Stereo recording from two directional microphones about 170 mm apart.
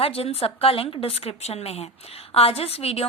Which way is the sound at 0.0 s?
35° left (ahead or behind).